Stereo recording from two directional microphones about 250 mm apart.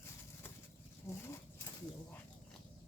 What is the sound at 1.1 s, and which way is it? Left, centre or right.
Speech, centre.